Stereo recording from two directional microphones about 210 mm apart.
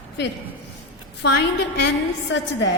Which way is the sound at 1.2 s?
55° left (ahead or behind).